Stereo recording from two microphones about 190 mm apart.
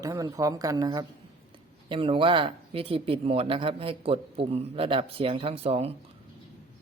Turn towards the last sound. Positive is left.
turn(degrees=-30)  # may be behind; listen again after turning